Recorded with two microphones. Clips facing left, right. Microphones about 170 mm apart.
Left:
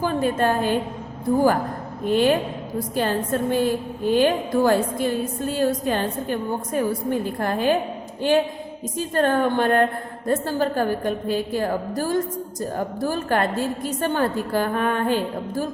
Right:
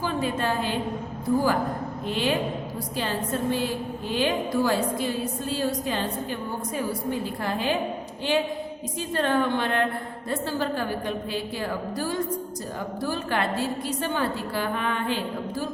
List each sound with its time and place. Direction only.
0.0 s a woman's voice: 50° left (ahead or behind)
2.0 s a woman's voice: 50° left (ahead or behind)